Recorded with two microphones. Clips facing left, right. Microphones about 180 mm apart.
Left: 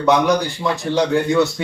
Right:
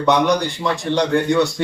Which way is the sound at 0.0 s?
Centre (ahead or behind).